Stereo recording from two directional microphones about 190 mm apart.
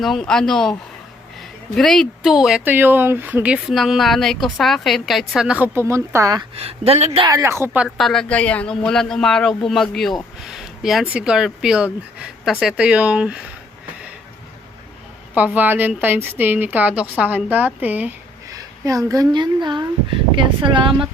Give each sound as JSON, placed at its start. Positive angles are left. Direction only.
{"t": 0.0, "sound": "speech", "side_deg": 0}
{"t": 6.6, "sound": "speech", "side_deg": -30}
{"t": 7.3, "sound": "a woman's voice", "side_deg": -15}
{"t": 7.9, "sound": "speech", "side_deg": 0}
{"t": 15.5, "sound": "a woman's voice", "side_deg": -10}